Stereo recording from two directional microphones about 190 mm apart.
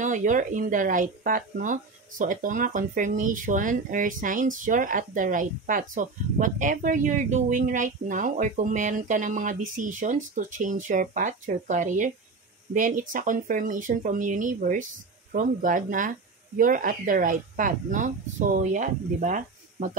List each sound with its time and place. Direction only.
0.0 s speech: 40° right (ahead or behind)